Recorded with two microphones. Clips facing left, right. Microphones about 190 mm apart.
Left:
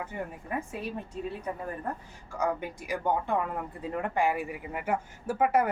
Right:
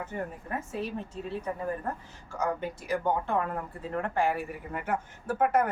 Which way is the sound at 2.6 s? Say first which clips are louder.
Right 3 dB; 15° left (ahead or behind).